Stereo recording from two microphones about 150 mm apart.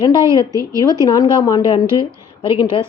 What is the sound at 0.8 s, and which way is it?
A woman's voice, 25° left (ahead or behind).